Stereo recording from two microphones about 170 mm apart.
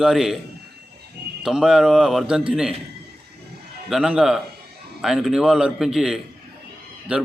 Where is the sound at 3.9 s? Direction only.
5° right (ahead or behind).